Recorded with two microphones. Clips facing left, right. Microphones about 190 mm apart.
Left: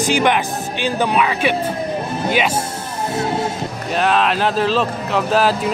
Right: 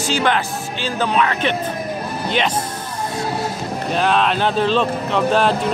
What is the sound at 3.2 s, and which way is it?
Speech, 25° left (ahead or behind).